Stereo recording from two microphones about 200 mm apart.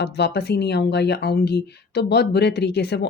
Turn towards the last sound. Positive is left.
turn(degrees=55)  # may be behind; listen again after turning